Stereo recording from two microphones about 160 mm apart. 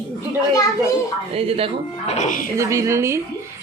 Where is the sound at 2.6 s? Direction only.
20° right (ahead or behind).